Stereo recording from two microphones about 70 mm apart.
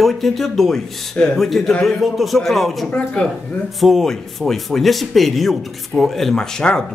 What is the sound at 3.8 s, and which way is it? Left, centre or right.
Speech, centre.